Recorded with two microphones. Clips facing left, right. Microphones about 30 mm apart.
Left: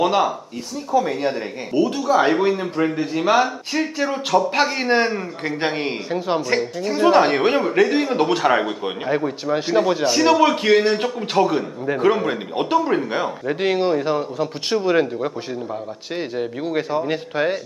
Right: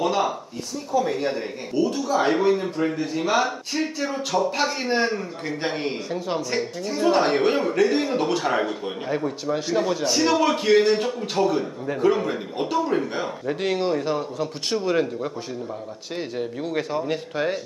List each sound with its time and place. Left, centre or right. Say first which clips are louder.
0.9 s a man's voice: left 3 dB; centre
3.4 s speech: left 3 dB; centre
4.0 s a man's voice: left 6 dB; centre
4.5 s a man's voice: left 5 dB; left